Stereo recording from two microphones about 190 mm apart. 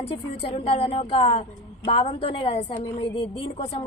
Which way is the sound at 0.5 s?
30° left (ahead or behind).